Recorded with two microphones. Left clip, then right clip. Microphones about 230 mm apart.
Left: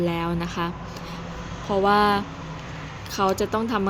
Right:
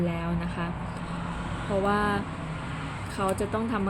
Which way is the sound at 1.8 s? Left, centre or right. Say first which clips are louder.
Left 9 dB; left.